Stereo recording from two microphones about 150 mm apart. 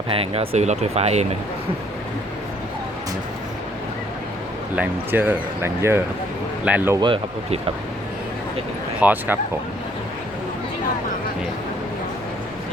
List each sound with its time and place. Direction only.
0.1 s speech: 40° right (ahead or behind)
4.7 s speech: 10° right (ahead or behind)
7.0 s speech: 35° right (ahead or behind)
9.0 s speech: 10° right (ahead or behind)